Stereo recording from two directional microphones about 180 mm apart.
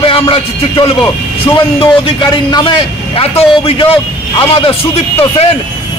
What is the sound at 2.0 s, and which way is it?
A man's voice, 25° left (ahead or behind).